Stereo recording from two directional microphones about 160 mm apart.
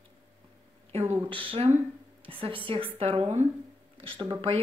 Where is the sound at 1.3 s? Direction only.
35° right (ahead or behind).